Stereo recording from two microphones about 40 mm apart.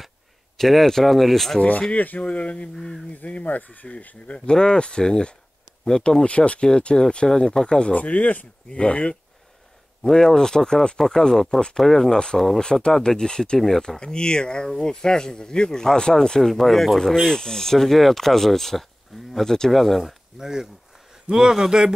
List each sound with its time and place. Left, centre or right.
0.6 s speech: centre
1.6 s speech: left
2.7 s speech: centre
3.3 s speech: left
4.5 s speech: left
6.2 s speech: left
7.9 s speech: left
8.6 s speech: left
10.0 s speech: centre
13.6 s speech: centre
13.8 s speech: centre
20.3 s speech: centre